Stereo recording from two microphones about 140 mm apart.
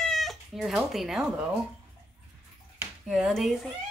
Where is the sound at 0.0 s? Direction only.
Centre (ahead or behind).